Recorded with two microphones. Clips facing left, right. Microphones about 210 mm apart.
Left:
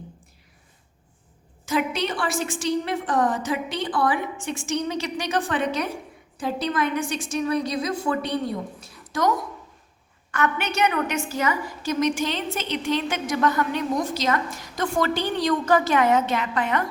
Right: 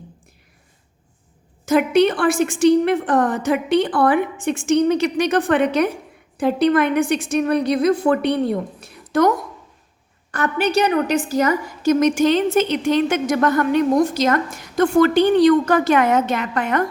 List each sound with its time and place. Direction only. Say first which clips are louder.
1.6 s a woman's voice: right 10 dB; 55° right (ahead or behind)
10.3 s a woman's voice: right 6 dB; 35° right (ahead or behind)